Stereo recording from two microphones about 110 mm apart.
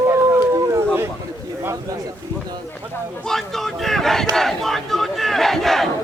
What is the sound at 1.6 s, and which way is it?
Bird, 30° right (ahead or behind).